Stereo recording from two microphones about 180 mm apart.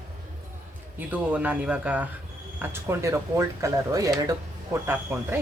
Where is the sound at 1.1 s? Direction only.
10° right (ahead or behind).